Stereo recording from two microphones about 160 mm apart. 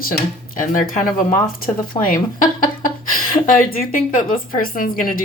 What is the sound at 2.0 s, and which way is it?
Speech, 20° left (ahead or behind).